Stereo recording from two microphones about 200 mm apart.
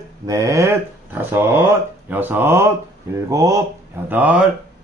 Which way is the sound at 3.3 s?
15° right (ahead or behind).